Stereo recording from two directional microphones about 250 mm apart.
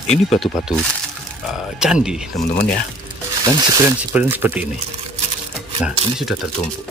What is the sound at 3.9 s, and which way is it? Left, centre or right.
Speech, centre.